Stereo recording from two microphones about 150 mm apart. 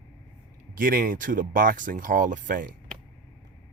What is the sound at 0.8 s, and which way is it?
Speech, 70° right (ahead or behind).